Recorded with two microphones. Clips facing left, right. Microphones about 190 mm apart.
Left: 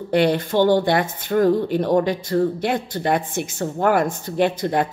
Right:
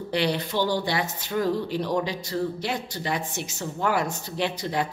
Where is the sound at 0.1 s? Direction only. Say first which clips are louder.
Left 8 dB; 50° left (ahead or behind).